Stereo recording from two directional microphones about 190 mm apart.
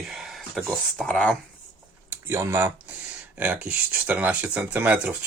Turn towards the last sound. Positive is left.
turn(degrees=-5)  # may be behind; listen again after turning